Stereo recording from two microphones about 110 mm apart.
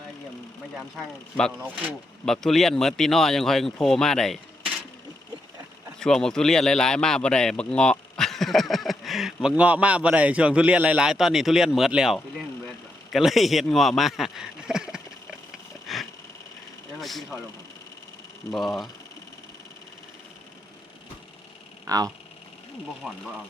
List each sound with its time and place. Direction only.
2.2 s a man's voice: 5° left (ahead or behind)
6.0 s speech: 5° left (ahead or behind)
15.9 s a sound: centre (ahead or behind)
18.5 s a man's voice: centre (ahead or behind)
21.8 s speech: 35° right (ahead or behind)
23.0 s a man's voice: centre (ahead or behind)